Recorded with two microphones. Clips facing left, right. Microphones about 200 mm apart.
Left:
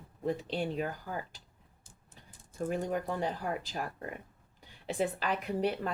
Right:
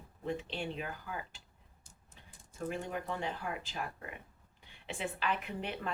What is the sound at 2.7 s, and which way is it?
A woman's voice, 40° left (ahead or behind).